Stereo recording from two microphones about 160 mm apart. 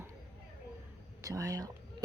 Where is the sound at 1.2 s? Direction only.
20° right (ahead or behind).